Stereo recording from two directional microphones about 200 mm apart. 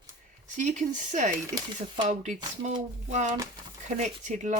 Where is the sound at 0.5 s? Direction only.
40° right (ahead or behind).